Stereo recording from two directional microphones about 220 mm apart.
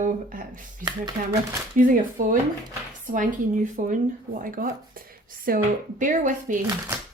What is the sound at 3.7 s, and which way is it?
Speech, 35° right (ahead or behind).